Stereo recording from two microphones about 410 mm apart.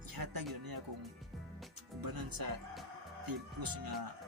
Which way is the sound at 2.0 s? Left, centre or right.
Right.